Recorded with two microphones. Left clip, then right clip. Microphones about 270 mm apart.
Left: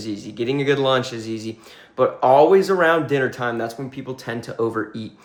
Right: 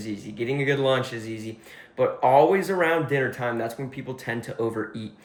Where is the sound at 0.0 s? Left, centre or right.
Centre.